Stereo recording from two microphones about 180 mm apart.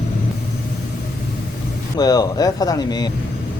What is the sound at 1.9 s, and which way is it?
Speech, 20° left (ahead or behind).